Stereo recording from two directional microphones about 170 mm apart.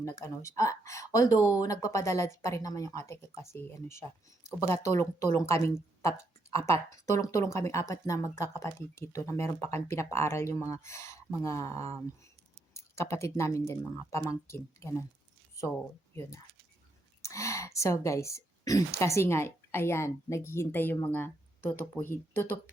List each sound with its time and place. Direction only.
0.0 s speech: 15° left (ahead or behind)
17.2 s speech: 15° left (ahead or behind)